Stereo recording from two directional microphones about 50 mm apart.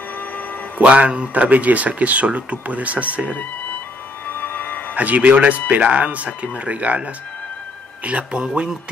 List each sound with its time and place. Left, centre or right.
0.7 s speech: right
4.3 s a sound: left
4.9 s speech: right